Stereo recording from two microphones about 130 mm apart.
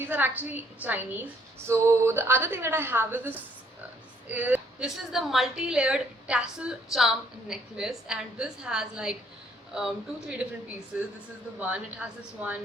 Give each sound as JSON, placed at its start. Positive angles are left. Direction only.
{"t": 0.1, "sound": "a woman's voice", "side_deg": -15}
{"t": 10.9, "sound": "a woman's voice", "side_deg": -10}